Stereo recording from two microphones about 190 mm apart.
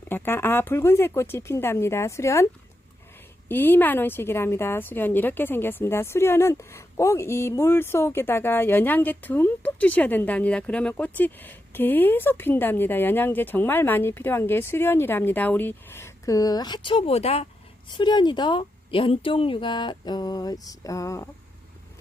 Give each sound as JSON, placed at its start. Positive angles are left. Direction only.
{"t": 0.1, "sound": "a woman's voice", "side_deg": 10}
{"t": 3.5, "sound": "a woman's voice", "side_deg": 10}